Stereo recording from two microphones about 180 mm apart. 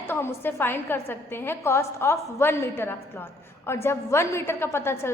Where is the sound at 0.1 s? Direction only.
10° left (ahead or behind).